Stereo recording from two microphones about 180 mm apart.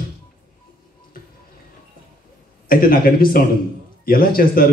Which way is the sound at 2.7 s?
55° left (ahead or behind).